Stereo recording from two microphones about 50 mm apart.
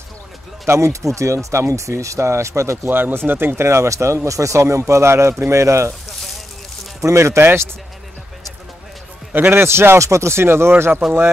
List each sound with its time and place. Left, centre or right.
0.7 s speech: right
2.9 s speech: right
3.6 s speech: right
7.0 s speech: right
7.3 s a man's voice: right
9.3 s a man's voice: right